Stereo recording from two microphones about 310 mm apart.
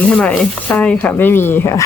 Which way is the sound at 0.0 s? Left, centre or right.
Centre.